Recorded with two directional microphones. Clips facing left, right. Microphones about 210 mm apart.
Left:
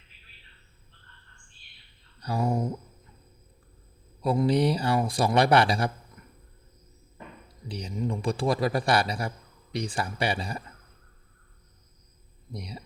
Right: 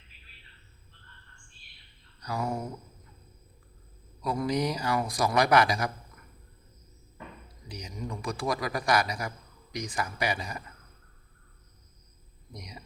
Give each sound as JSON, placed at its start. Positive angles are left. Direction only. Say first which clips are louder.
{"t": 2.2, "sound": "a sound", "louder": "left 4 dB", "side_deg": 30}
{"t": 4.2, "sound": "a man's voice", "louder": "left 5 dB", "side_deg": 30}
{"t": 7.7, "sound": "a man's voice", "louder": "left 7 dB", "side_deg": 30}
{"t": 12.5, "sound": "speech", "louder": "left 6 dB", "side_deg": 30}